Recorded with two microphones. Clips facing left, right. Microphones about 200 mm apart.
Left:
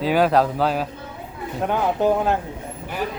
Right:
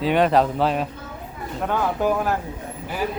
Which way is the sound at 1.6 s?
20° left (ahead or behind).